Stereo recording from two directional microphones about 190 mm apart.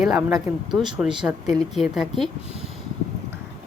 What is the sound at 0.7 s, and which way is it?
A woman's voice, 5° right (ahead or behind).